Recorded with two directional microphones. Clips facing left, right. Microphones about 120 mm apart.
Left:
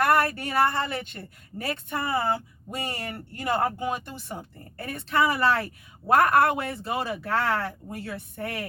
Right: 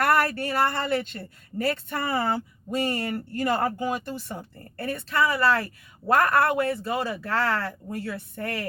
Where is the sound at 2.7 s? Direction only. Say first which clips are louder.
Right 7 dB; 25° left (ahead or behind).